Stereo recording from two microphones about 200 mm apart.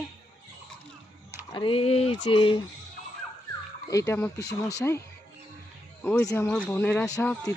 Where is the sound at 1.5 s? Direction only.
25° left (ahead or behind).